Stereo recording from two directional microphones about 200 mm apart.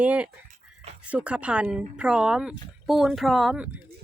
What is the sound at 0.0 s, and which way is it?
A woman's voice, 5° right (ahead or behind).